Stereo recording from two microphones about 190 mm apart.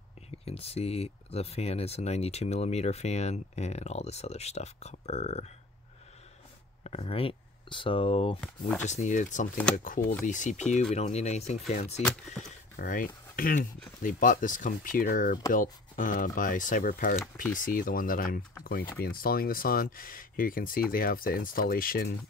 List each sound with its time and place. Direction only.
0.5 s speech: 30° left (ahead or behind)
6.8 s speech: 35° left (ahead or behind)
8.4 s speech: 5° left (ahead or behind)
8.8 s speech: 40° left (ahead or behind)